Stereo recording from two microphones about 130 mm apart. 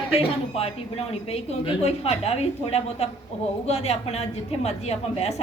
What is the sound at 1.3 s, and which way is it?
A woman's voice, 50° left (ahead or behind).